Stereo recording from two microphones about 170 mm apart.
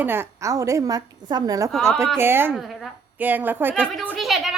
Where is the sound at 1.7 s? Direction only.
5° left (ahead or behind).